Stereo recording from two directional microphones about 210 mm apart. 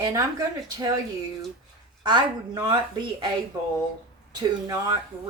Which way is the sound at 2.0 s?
20° right (ahead or behind).